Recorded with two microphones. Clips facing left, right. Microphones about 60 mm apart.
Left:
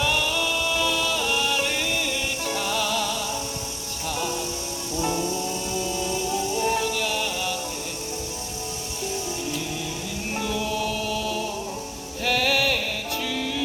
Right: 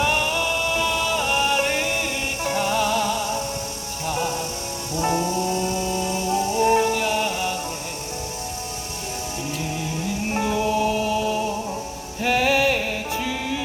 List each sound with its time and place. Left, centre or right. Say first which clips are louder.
0.0 s music: right 3 dB; centre
10.3 s music: right 5 dB; right